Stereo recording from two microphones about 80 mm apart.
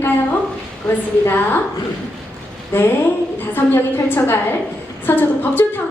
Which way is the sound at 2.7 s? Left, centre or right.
Left.